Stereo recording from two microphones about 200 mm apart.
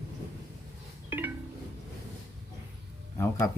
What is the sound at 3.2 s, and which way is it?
Speech, 15° left (ahead or behind).